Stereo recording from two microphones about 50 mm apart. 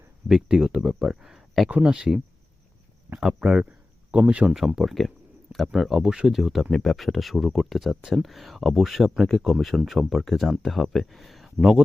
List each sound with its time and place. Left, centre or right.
0.3 s speech: centre
1.7 s speech: right
3.2 s speech: centre
4.3 s speech: right
4.5 s speech: centre